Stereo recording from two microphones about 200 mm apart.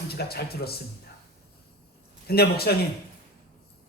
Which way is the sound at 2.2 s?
50° left (ahead or behind).